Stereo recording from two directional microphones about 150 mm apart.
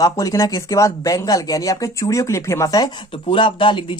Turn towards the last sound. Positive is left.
turn(degrees=35)  # may be behind; listen again after turning